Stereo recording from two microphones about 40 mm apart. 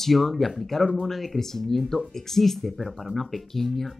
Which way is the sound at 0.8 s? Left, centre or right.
Centre.